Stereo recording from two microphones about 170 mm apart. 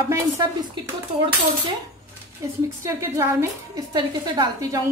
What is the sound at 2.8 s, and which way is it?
A woman's voice, 15° right (ahead or behind).